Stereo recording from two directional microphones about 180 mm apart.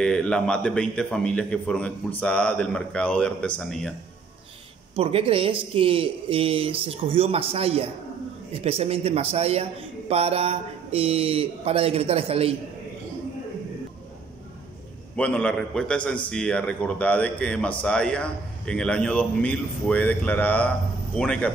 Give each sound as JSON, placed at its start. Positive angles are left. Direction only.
{"t": 0.0, "sound": "a man's voice", "side_deg": 5}
{"t": 4.9, "sound": "a man's voice", "side_deg": -30}
{"t": 15.1, "sound": "a man's voice", "side_deg": 5}